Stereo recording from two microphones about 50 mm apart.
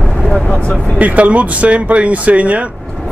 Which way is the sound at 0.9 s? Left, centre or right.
Right.